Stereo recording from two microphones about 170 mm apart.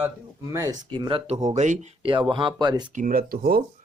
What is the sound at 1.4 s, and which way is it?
Speech, 45° right (ahead or behind).